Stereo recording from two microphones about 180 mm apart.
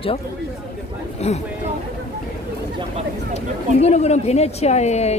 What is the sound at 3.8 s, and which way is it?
A woman's voice, 35° left (ahead or behind).